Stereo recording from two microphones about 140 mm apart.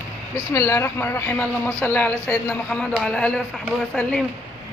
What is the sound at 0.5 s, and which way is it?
Speech, 20° left (ahead or behind).